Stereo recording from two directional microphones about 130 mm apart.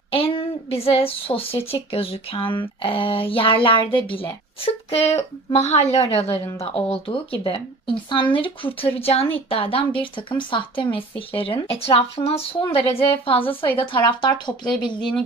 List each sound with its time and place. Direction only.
0.1 s a woman's voice: 45° left (ahead or behind)